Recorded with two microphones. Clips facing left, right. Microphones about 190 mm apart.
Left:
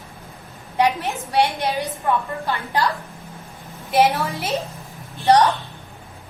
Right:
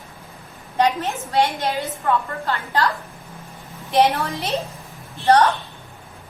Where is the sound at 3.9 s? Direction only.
5° left (ahead or behind).